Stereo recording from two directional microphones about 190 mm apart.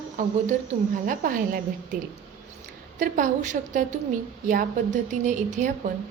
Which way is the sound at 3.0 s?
40° right (ahead or behind).